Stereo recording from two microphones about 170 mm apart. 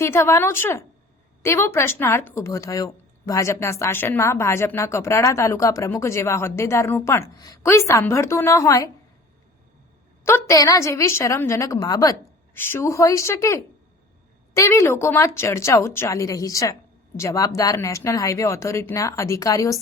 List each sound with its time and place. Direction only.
0.0 s speech: 15° left (ahead or behind)
10.2 s speech: 15° left (ahead or behind)